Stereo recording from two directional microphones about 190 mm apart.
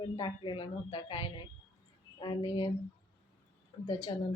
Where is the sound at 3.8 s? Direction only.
25° left (ahead or behind).